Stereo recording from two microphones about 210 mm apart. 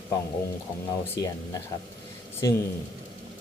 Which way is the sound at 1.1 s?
15° left (ahead or behind).